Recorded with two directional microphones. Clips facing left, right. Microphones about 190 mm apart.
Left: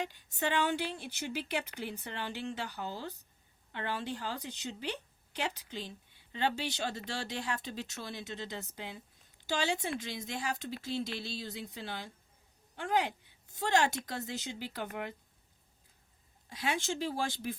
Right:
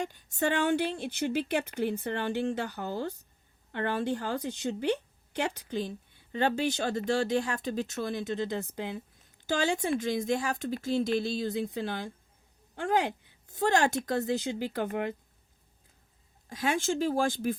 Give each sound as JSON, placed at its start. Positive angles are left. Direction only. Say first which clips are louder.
{"t": 0.0, "sound": "a woman's voice", "louder": "right 5 dB", "side_deg": -45}
{"t": 16.5, "sound": "a woman's voice", "louder": "right 6 dB", "side_deg": -45}